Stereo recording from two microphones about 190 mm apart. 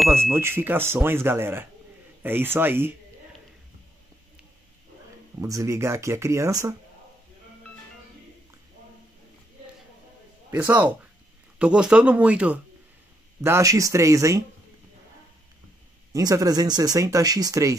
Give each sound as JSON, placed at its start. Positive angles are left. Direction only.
{"t": 0.3, "sound": "speech", "side_deg": -10}
{"t": 5.4, "sound": "speech", "side_deg": -15}
{"t": 10.5, "sound": "speech", "side_deg": -10}
{"t": 16.1, "sound": "speech", "side_deg": -20}